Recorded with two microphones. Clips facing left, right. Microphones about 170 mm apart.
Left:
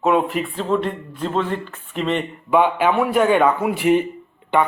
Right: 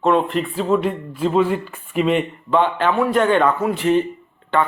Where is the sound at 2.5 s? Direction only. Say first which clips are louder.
Left 2 dB; 10° left (ahead or behind).